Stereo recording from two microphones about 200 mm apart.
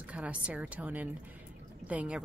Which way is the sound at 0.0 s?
5° right (ahead or behind).